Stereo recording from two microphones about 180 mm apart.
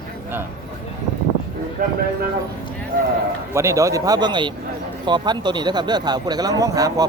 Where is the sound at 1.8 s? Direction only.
50° right (ahead or behind).